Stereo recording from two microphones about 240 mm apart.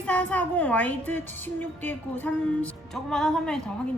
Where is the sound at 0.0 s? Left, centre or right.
Centre.